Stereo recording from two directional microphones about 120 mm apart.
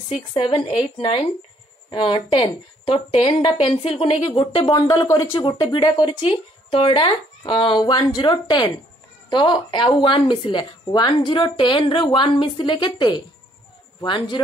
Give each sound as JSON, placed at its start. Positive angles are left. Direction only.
{"t": 0.7, "sound": "speech", "side_deg": 50}
{"t": 4.6, "sound": "speech", "side_deg": 35}
{"t": 6.0, "sound": "speech", "side_deg": 50}